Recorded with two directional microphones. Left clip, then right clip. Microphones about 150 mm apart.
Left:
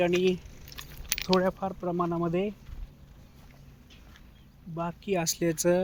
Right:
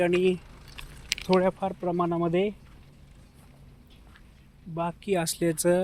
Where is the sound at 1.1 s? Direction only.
5° left (ahead or behind).